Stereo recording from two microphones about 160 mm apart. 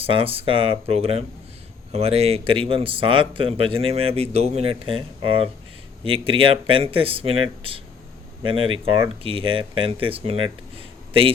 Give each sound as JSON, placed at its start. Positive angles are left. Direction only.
{"t": 0.0, "sound": "speech", "side_deg": -35}